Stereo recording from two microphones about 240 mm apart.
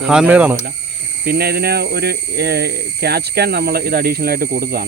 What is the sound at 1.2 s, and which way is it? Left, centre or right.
Speech, right.